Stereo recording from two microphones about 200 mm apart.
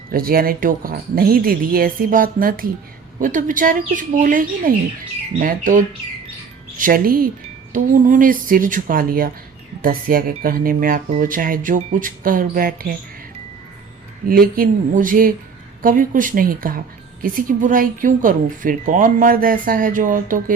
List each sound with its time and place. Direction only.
0.1 s speech: 45° right (ahead or behind)
14.3 s speech: 45° right (ahead or behind)